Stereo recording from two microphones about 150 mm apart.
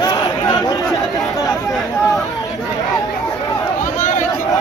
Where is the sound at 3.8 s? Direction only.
55° left (ahead or behind).